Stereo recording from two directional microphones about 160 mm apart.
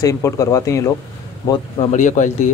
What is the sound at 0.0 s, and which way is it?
Speech, 20° left (ahead or behind).